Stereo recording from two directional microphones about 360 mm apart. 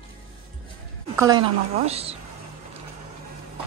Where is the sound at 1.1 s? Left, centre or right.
Centre.